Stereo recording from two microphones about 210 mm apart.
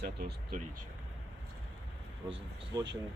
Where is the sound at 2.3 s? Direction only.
20° right (ahead or behind).